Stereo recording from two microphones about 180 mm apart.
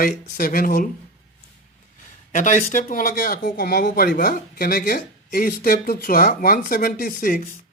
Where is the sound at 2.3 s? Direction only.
45° left (ahead or behind).